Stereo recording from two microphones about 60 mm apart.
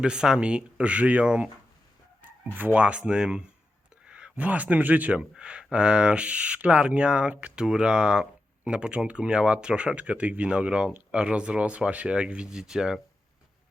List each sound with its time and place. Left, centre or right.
0.0 s speech: centre
2.6 s speech: right
2.8 s speech: centre
4.0 s a sound: centre
4.4 s speech: right
5.1 s a sound: centre
5.7 s speech: centre